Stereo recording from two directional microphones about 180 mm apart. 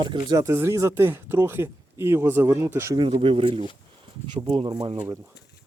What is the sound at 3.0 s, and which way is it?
Speech, 30° right (ahead or behind).